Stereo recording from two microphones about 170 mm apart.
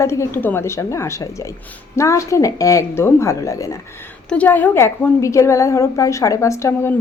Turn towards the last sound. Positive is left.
turn(degrees=15)  # may be behind; listen again after turning